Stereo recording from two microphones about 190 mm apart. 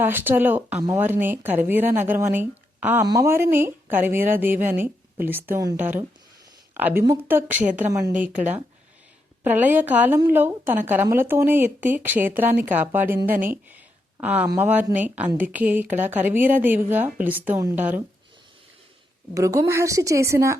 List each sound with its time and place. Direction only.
0.0 s a woman's voice: 10° right (ahead or behind)
13.7 s a sound: 10° right (ahead or behind)
14.5 s speech: 10° right (ahead or behind)
19.3 s speech: 15° right (ahead or behind)